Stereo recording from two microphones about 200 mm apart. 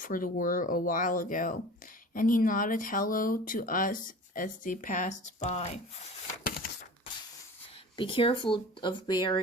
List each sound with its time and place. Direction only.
0.0 s speech: 45° left (ahead or behind)
7.9 s speech: 25° left (ahead or behind)